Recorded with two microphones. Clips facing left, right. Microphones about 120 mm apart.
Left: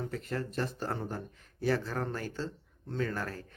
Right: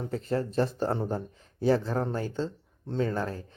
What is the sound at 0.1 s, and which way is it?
A man's voice, 30° right (ahead or behind).